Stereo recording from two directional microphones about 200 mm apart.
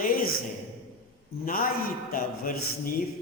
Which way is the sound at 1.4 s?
45° left (ahead or behind).